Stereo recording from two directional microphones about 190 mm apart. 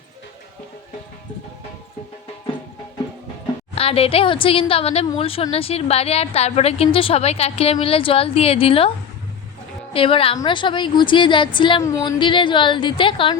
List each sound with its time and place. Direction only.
3.8 s a woman's voice: 30° left (ahead or behind)
9.9 s a woman's voice: 30° left (ahead or behind)